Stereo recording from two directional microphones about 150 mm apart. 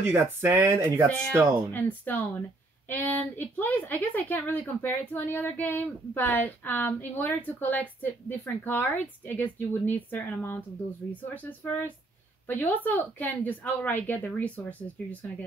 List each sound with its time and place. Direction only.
0.0 s speech: 15° right (ahead or behind)
1.7 s a woman's voice: 10° left (ahead or behind)